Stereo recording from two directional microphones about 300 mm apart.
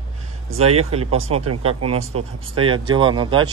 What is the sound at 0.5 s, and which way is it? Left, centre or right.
Speech, centre.